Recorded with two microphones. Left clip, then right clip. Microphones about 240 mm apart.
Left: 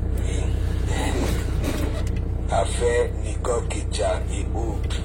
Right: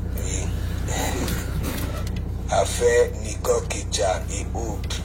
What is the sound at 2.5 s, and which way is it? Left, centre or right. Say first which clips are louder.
Speech: right 3 dB; right.